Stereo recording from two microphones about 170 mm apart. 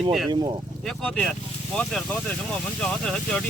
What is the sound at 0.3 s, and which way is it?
Speech, 25° right (ahead or behind).